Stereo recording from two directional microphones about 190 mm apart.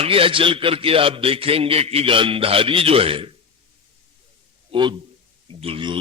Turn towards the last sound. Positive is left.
turn(degrees=-30)  # may be behind; listen again after turning